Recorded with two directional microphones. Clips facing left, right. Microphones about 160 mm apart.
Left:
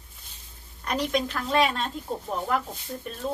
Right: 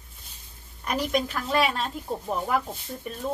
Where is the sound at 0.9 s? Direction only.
5° right (ahead or behind).